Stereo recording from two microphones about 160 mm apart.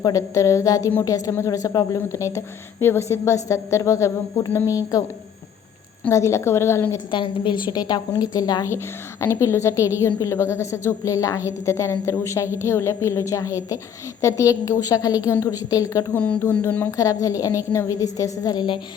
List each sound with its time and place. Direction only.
0.0 s a woman's voice: 20° left (ahead or behind)
6.1 s a woman's voice: 20° left (ahead or behind)
7.1 s a woman's voice: 30° left (ahead or behind)